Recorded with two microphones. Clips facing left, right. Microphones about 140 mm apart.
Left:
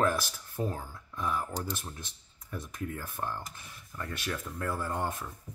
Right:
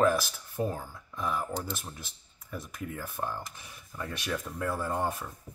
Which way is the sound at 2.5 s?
10° right (ahead or behind).